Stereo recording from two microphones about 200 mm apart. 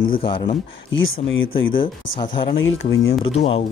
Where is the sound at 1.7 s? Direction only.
25° left (ahead or behind).